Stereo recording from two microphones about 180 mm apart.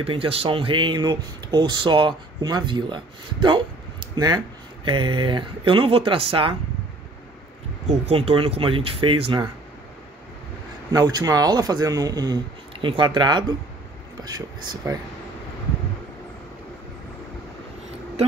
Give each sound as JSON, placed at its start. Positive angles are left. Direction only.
{"t": 0.0, "sound": "speech", "side_deg": -30}
{"t": 8.1, "sound": "speech", "side_deg": -30}
{"t": 10.9, "sound": "speech", "side_deg": -20}